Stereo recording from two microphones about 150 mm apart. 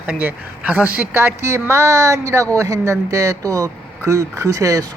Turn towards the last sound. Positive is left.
turn(degrees=-20)  # may be behind; listen again after turning